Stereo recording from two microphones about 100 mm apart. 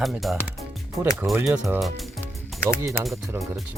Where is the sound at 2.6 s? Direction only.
25° left (ahead or behind).